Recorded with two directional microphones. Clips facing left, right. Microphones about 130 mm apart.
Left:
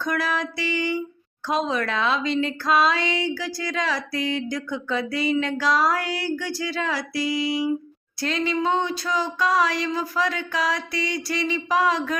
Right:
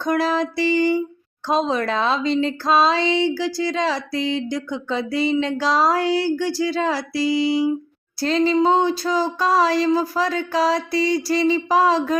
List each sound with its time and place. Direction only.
0.0 s speech: 30° right (ahead or behind)